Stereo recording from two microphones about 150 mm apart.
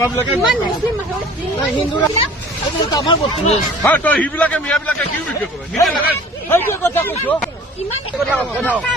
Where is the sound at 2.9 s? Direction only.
25° left (ahead or behind).